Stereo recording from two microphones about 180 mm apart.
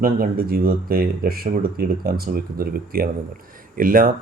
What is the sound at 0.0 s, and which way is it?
A man's voice, 55° right (ahead or behind).